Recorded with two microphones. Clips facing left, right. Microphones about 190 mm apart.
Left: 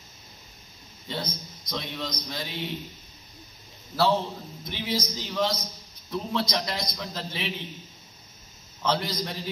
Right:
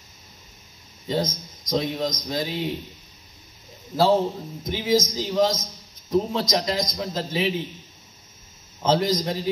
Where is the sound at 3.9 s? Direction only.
45° right (ahead or behind).